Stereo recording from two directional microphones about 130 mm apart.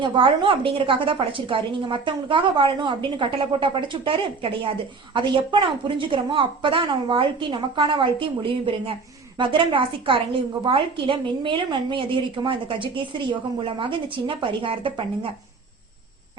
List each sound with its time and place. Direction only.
0.0 s a woman's voice: 40° right (ahead or behind)